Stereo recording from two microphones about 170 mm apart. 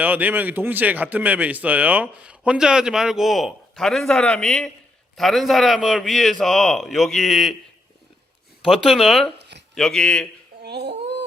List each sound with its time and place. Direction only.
0.0 s a man's voice: 10° right (ahead or behind)
8.6 s a man's voice: centre (ahead or behind)
10.6 s a sound: 75° right (ahead or behind)